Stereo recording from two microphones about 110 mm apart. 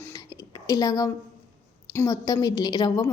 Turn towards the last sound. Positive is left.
turn(degrees=40)  # may be behind; listen again after turning